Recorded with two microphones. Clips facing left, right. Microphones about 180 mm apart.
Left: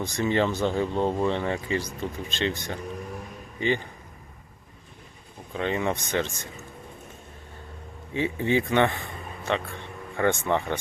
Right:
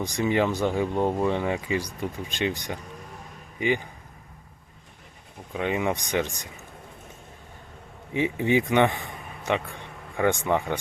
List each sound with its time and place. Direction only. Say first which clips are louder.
0.0 s speech: right 1 dB; 10° right (ahead or behind)
5.5 s speech: right 1 dB; 15° right (ahead or behind)
8.1 s speech: right 2 dB; 15° right (ahead or behind)